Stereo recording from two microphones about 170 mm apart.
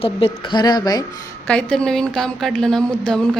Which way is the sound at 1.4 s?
5° left (ahead or behind).